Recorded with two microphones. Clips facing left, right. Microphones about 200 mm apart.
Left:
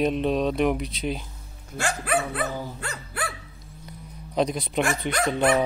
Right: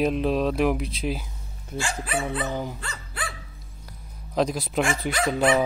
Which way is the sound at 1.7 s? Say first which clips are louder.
Left 3 dB; 60° left (ahead or behind).